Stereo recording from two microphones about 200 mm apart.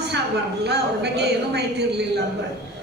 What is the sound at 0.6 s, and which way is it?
A woman's voice, 55° right (ahead or behind).